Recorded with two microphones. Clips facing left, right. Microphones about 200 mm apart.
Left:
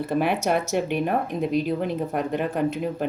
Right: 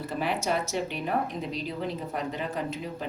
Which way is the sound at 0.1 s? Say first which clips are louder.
Left 6 dB; 60° left (ahead or behind).